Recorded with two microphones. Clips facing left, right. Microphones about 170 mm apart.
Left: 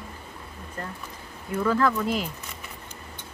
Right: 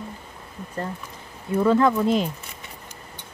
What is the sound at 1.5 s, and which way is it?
Speech, 25° right (ahead or behind).